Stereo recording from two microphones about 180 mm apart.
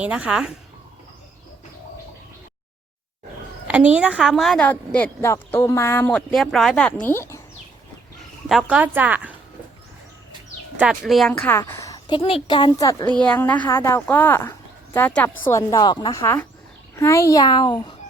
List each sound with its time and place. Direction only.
0.0 s speech: 5° right (ahead or behind)
3.7 s a woman's voice: 10° right (ahead or behind); by 7.4 s 15° left (ahead or behind)
8.4 s speech: centre (ahead or behind)
10.8 s speech: 5° right (ahead or behind)
11.3 s a woman's voice: 10° left (ahead or behind)